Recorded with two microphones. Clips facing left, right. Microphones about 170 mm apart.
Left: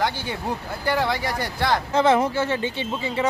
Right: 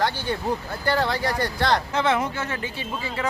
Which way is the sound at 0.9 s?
10° left (ahead or behind).